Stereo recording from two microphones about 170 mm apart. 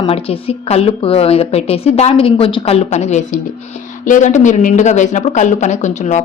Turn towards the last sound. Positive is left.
turn(degrees=40)  # may be behind; listen again after turning